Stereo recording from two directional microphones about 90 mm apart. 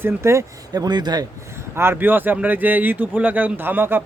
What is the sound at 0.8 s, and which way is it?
Speech, 50° right (ahead or behind).